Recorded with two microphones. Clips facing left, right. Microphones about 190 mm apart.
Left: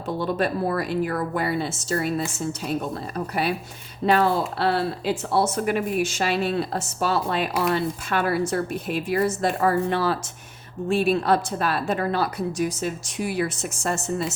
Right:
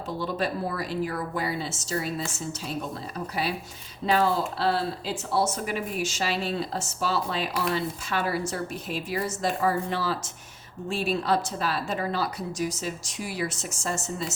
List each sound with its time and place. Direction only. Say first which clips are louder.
0.2 s speech: left 5 dB; 55° left (ahead or behind)
4.0 s speech: left 3 dB; 60° left (ahead or behind)